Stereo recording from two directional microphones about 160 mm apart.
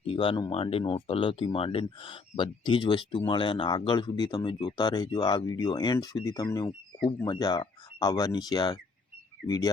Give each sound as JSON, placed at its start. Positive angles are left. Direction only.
{"t": 0.0, "sound": "speech", "side_deg": 35}